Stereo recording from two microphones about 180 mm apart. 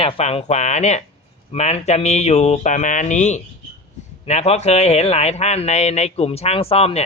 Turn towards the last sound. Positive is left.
turn(degrees=35)  # may be behind; listen again after turning